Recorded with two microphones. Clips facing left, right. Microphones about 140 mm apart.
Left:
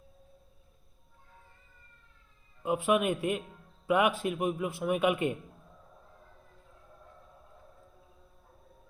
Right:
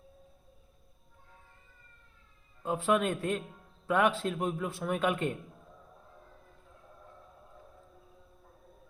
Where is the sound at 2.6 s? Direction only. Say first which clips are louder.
Left 1 dB; 10° left (ahead or behind).